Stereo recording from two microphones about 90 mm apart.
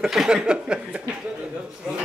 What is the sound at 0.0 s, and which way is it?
Speech, 5° right (ahead or behind).